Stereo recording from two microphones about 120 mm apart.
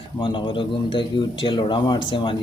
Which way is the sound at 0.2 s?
45° left (ahead or behind).